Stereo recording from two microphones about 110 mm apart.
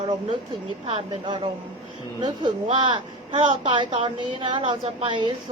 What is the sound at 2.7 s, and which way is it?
A woman's voice, 50° right (ahead or behind).